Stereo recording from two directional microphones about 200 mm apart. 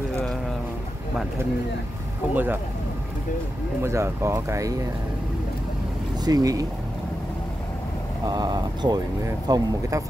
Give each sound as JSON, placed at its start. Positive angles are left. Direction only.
{"t": 2.3, "sound": "speech", "side_deg": -10}
{"t": 3.8, "sound": "speech", "side_deg": -15}
{"t": 6.2, "sound": "speech", "side_deg": -20}
{"t": 8.3, "sound": "speech", "side_deg": -20}